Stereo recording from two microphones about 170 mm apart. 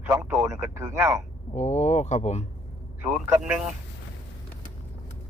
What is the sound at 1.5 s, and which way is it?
Speech, 40° left (ahead or behind).